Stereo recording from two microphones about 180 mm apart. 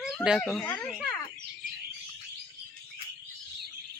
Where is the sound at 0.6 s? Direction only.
15° left (ahead or behind).